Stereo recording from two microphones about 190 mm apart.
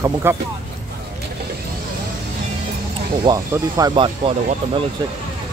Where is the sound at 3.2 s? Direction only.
20° right (ahead or behind).